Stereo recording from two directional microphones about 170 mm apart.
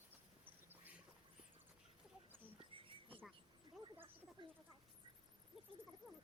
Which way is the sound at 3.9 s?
10° right (ahead or behind).